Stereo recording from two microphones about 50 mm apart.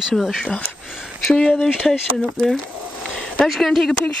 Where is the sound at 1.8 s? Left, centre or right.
Centre.